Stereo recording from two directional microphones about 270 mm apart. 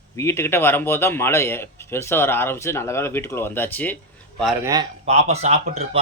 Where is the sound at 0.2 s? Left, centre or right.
Centre.